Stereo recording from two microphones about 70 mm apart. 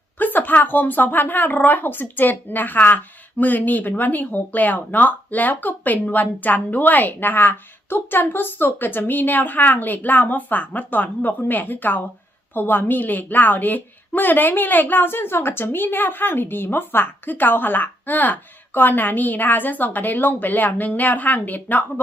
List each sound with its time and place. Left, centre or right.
0.2 s speech: left